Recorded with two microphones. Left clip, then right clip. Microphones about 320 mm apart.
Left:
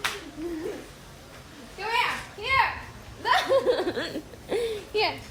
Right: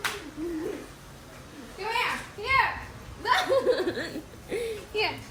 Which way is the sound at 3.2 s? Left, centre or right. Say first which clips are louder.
Left 1 dB; centre.